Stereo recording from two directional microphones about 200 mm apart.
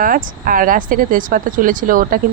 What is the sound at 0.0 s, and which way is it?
Speech, 45° right (ahead or behind).